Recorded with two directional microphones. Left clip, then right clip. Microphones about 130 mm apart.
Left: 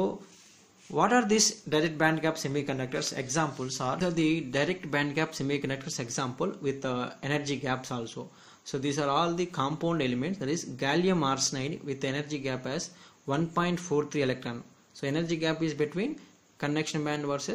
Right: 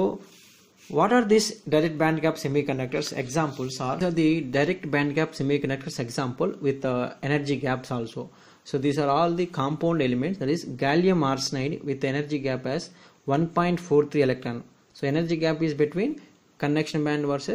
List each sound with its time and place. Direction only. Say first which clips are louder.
0.9 s speech: right 4 dB; 25° right (ahead or behind)